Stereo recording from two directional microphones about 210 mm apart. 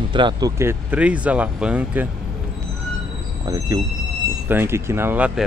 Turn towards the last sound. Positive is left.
turn(degrees=-5)  # may be behind; listen again after turning